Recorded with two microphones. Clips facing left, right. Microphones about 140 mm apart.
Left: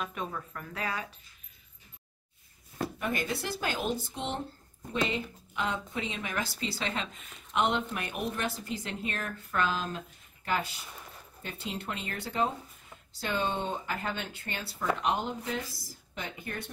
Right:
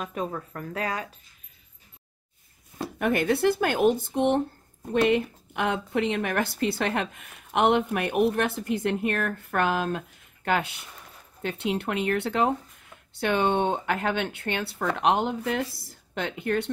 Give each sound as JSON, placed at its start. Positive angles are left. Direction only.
{"t": 0.0, "sound": "speech", "side_deg": -40}
{"t": 3.0, "sound": "speech", "side_deg": -65}